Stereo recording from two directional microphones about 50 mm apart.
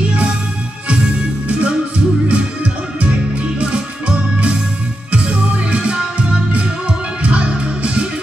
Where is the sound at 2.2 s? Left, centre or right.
Right.